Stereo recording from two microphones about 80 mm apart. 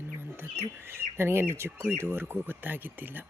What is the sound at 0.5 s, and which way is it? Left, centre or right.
Speech, right.